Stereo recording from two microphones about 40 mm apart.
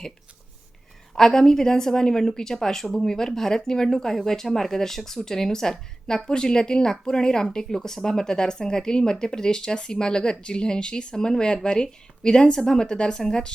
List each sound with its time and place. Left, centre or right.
1.1 s a woman's voice: centre